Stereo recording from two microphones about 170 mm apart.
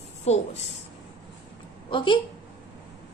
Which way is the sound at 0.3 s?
40° left (ahead or behind).